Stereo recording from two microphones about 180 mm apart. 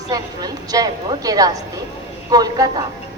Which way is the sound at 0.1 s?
20° right (ahead or behind).